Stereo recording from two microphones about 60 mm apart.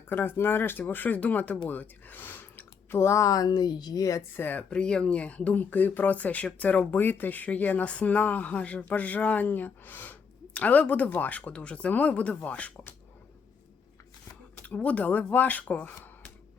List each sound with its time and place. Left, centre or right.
0.1 s speech: left
4.4 s speech: left
4.7 s speech: centre
14.5 s speech: left